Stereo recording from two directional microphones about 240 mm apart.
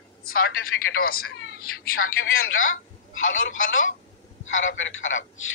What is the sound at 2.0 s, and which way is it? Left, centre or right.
Speech, left.